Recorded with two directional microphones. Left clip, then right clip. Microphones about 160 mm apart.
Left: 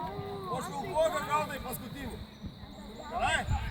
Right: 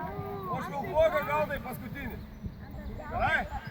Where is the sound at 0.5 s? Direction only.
20° left (ahead or behind).